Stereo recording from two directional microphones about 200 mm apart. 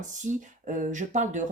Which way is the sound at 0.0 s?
40° right (ahead or behind).